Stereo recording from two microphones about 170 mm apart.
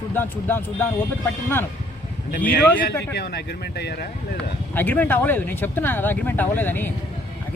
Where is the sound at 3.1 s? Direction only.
75° left (ahead or behind).